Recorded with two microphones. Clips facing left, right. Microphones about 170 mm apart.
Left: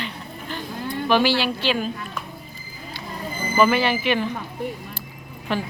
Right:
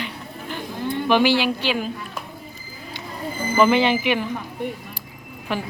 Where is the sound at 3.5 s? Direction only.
20° right (ahead or behind).